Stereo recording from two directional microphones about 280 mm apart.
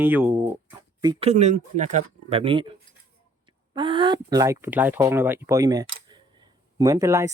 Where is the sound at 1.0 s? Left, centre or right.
Centre.